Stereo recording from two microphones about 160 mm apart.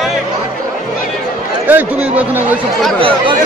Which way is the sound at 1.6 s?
10° right (ahead or behind).